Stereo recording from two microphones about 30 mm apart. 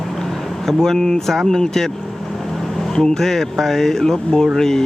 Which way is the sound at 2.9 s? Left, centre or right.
Centre.